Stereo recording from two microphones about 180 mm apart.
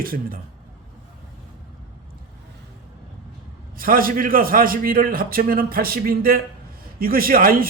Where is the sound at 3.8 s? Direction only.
55° right (ahead or behind).